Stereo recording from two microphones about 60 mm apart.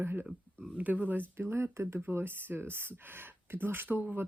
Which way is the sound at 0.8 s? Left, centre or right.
Right.